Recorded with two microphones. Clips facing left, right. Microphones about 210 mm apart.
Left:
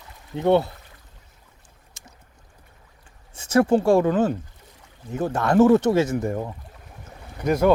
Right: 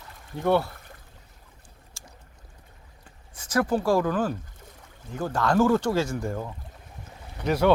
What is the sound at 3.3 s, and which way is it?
Speech, 25° left (ahead or behind).